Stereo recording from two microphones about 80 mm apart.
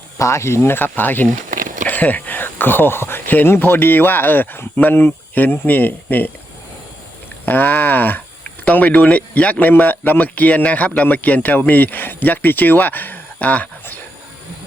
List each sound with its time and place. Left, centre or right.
0.2 s speech: left
7.4 s speech: left